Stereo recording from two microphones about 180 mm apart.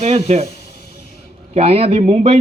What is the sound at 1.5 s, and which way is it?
Speech, 35° right (ahead or behind).